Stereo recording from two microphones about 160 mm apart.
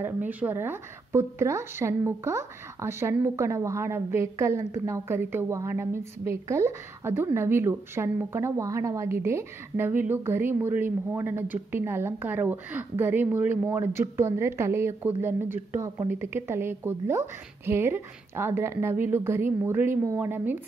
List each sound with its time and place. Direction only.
0.0 s a woman's voice: 10° right (ahead or behind)